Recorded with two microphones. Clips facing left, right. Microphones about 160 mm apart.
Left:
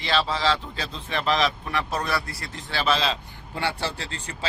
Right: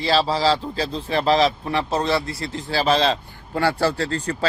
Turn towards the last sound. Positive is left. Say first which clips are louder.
# right 10 dB
turn(degrees=-60)  # may be behind; listen again after turning